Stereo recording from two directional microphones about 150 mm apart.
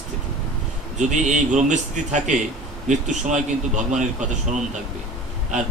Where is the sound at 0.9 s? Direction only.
55° right (ahead or behind).